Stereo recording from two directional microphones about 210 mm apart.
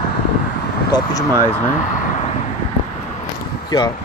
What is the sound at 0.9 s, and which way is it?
Speech, 20° left (ahead or behind).